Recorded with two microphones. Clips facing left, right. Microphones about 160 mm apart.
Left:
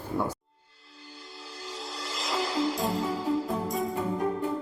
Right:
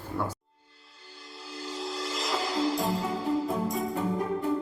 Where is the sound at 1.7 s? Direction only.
Centre (ahead or behind).